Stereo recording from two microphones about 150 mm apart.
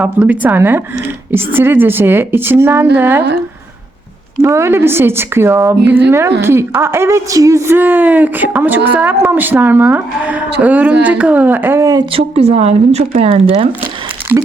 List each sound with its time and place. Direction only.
0.0 s a woman's voice: 10° right (ahead or behind)
4.4 s a woman's voice: 20° right (ahead or behind)
12.1 s speech: 40° right (ahead or behind)
14.3 s speech: 10° right (ahead or behind)